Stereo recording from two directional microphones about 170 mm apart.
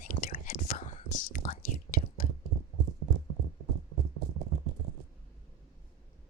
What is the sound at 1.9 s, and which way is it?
Whispering, 55° left (ahead or behind).